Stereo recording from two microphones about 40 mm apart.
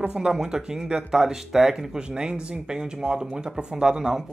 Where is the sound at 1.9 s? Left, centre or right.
Right.